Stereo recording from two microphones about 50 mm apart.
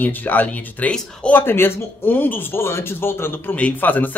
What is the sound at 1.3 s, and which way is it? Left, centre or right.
Speech, left.